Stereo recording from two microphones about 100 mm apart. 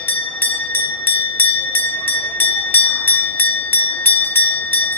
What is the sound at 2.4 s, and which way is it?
Bell, 20° left (ahead or behind).